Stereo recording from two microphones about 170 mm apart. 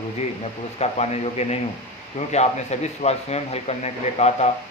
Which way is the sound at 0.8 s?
40° left (ahead or behind).